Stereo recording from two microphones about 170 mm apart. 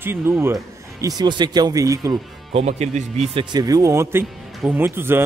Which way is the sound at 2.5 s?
40° right (ahead or behind).